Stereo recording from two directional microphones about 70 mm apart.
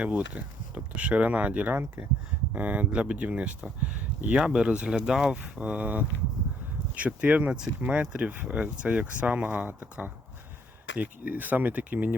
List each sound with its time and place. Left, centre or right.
0.0 s speech: centre